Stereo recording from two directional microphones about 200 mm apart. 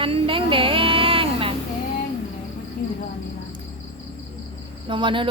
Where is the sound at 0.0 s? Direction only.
25° right (ahead or behind).